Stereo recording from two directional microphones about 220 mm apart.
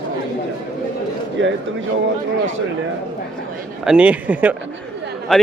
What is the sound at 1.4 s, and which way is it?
Speech, 55° right (ahead or behind).